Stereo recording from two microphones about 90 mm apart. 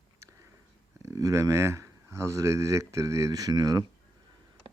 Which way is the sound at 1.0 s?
40° right (ahead or behind).